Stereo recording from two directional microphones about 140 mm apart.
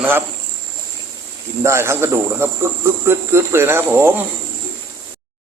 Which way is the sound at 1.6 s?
20° right (ahead or behind).